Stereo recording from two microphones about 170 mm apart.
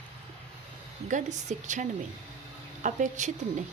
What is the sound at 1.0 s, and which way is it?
A woman's voice, 45° right (ahead or behind).